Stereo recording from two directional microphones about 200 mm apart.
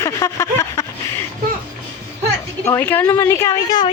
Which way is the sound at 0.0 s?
15° left (ahead or behind).